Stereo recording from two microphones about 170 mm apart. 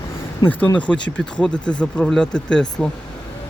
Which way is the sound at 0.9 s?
5° left (ahead or behind).